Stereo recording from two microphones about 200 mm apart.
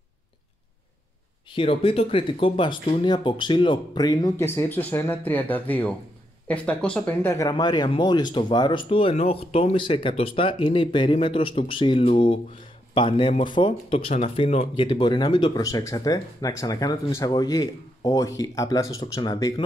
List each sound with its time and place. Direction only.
1.5 s speech: 25° left (ahead or behind)